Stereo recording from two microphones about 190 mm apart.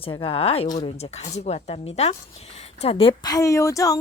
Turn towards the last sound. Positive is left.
turn(degrees=15)  # may be behind; listen again after turning